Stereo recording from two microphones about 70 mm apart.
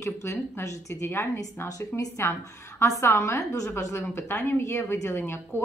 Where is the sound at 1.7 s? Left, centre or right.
Left.